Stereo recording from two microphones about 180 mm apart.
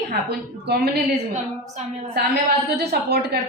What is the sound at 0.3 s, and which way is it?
Speech, 65° right (ahead or behind).